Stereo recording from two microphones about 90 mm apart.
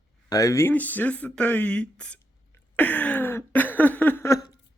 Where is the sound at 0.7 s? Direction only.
20° left (ahead or behind).